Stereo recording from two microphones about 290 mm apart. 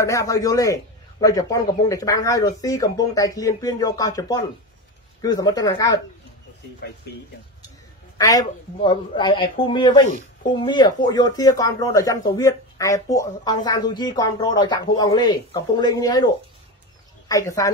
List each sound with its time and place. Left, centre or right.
0.0 s speech: centre
8.2 s speech: centre
17.3 s speech: centre